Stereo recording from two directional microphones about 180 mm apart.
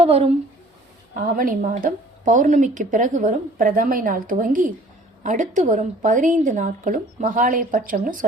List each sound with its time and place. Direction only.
0.0 s speech: 35° right (ahead or behind)
1.1 s a woman's voice: 50° right (ahead or behind)